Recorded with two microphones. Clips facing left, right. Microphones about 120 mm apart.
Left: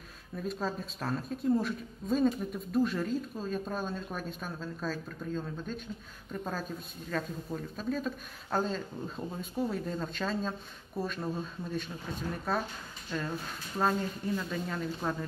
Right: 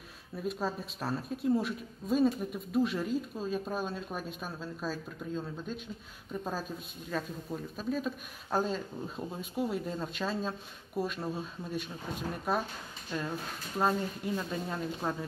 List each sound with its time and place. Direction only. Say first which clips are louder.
0.4 s a woman's voice: even; 5° right (ahead or behind)
13.7 s a woman's voice: even; 10° right (ahead or behind)
14.3 s speech: even; 25° right (ahead or behind)